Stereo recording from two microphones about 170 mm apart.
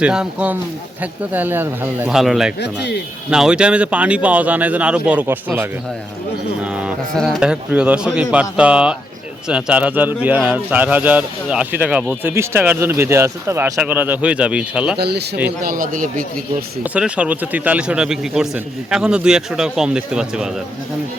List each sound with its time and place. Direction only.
0.0 s a man's voice: 5° right (ahead or behind)
2.6 s speech: 85° left
3.2 s a man's voice: 5° right (ahead or behind)
14.9 s a man's voice: 75° right (ahead or behind)
15.6 s speech: 55° right (ahead or behind)
16.8 s a man's voice: 5° right (ahead or behind)